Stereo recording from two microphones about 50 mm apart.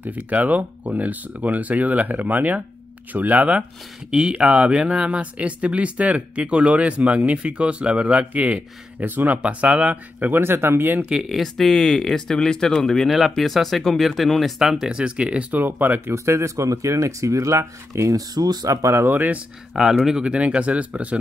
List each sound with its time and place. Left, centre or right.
0.0 s speech: right
4.1 s speech: centre
10.3 s speech: right
11.1 s speech: centre
11.4 s speech: centre
14.7 s speech: centre
15.5 s speech: right
16.3 s speech: right
19.0 s speech: right
19.7 s speech: centre; by 21.2 s right